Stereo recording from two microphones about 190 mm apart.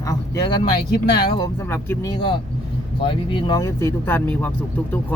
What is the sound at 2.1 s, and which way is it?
Speech, 25° left (ahead or behind).